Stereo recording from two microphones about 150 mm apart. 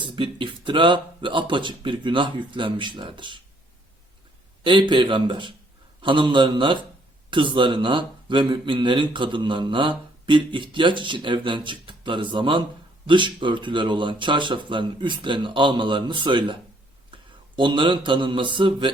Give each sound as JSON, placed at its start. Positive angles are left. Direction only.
{"t": 0.0, "sound": "speech", "side_deg": -35}
{"t": 4.6, "sound": "speech", "side_deg": -35}
{"t": 17.1, "sound": "a sound", "side_deg": -35}
{"t": 17.6, "sound": "speech", "side_deg": -35}